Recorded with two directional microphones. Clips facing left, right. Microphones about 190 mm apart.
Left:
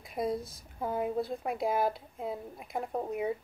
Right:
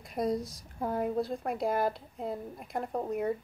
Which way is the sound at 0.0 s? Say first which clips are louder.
Right 2 dB; centre (ahead or behind).